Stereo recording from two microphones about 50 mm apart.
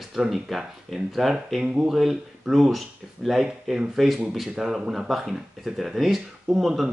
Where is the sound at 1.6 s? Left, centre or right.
Centre.